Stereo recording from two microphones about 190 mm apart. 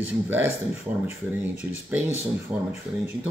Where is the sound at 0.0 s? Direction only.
10° right (ahead or behind).